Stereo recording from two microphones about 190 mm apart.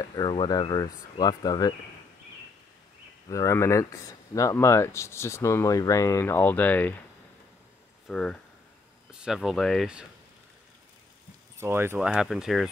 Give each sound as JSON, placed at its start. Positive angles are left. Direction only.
{"t": 0.0, "sound": "speech", "side_deg": 20}
{"t": 3.3, "sound": "speech", "side_deg": 15}
{"t": 8.1, "sound": "speech", "side_deg": 5}
{"t": 11.5, "sound": "speech", "side_deg": -10}